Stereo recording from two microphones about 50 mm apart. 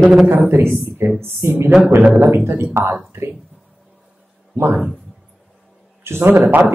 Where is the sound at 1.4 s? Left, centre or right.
Right.